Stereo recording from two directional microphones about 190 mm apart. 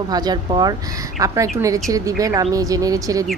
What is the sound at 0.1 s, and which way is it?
A woman's voice, 20° right (ahead or behind).